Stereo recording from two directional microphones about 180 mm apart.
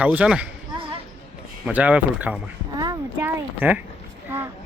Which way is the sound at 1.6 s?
10° right (ahead or behind).